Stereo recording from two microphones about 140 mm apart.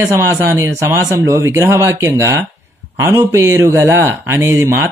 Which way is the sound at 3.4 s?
20° right (ahead or behind).